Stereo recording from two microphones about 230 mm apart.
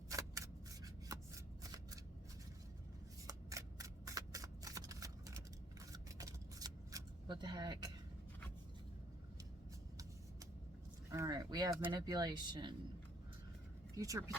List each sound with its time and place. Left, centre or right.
0.1 s shuffling cards: centre
3.2 s shuffling cards: centre
5.8 s a sound: centre
11.1 s speech: centre
13.9 s speech: centre